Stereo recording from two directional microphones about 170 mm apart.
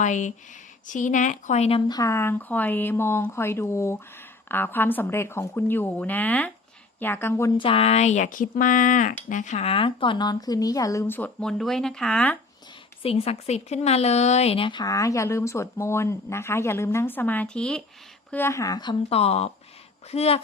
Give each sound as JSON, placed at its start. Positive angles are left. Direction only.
{"t": 0.0, "sound": "speech", "side_deg": 45}
{"t": 1.9, "sound": "a woman's voice", "side_deg": 20}
{"t": 7.6, "sound": "speech", "side_deg": 35}
{"t": 13.0, "sound": "a woman's voice", "side_deg": 35}